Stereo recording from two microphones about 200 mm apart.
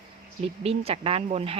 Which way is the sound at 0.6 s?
30° right (ahead or behind).